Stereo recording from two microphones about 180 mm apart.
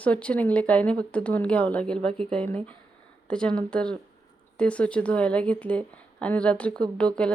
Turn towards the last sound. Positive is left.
turn(degrees=5)  # may be behind; listen again after turning